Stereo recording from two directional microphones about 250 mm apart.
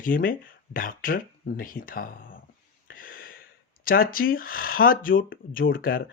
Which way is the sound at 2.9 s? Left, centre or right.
Left.